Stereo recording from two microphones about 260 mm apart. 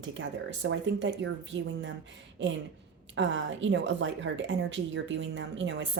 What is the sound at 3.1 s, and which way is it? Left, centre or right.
A woman's voice, right.